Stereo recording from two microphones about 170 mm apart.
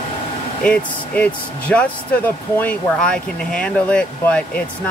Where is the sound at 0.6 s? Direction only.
5° left (ahead or behind).